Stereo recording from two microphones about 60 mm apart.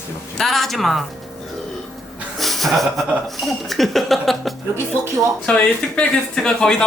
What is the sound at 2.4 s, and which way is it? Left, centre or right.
Music, centre.